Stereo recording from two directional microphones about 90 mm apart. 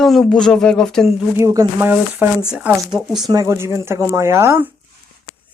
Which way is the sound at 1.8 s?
20° right (ahead or behind).